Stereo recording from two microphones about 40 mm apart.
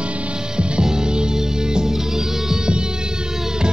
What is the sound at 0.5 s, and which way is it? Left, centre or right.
Music, right.